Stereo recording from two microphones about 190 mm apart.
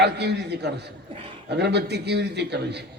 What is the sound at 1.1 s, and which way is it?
Speech, 30° right (ahead or behind).